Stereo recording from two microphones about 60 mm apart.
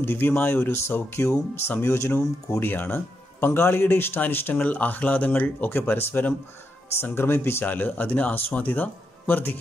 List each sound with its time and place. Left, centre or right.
0.0 s speech: left
4.6 s speech: left
7.6 s speech: left